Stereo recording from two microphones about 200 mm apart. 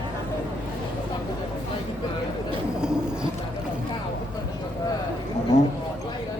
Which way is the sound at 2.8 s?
5° right (ahead or behind).